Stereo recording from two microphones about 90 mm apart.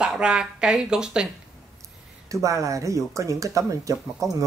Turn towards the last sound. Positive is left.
turn(degrees=-35)  # may be behind; listen again after turning